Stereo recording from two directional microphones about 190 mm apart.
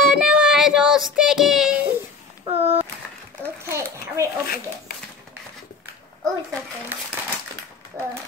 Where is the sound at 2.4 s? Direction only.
30° right (ahead or behind).